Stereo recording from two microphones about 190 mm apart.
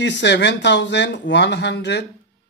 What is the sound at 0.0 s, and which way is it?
Speech, 65° left (ahead or behind).